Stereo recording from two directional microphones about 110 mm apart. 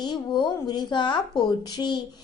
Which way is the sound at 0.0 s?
40° left (ahead or behind).